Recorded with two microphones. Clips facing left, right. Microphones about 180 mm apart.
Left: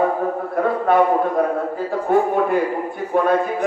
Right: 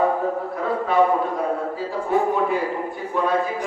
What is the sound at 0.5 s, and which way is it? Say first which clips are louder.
A man's voice: left 6 dB; 55° left (ahead or behind).